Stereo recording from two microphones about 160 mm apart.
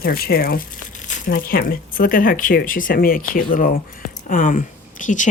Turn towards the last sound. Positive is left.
turn(degrees=55)  # may be behind; listen again after turning